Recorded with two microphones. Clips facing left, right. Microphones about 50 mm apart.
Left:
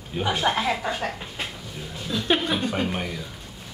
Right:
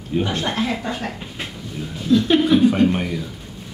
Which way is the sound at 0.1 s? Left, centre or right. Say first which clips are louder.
Right 1 dB; centre.